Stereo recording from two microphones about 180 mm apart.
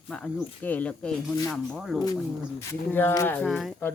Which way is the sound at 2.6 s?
15° left (ahead or behind).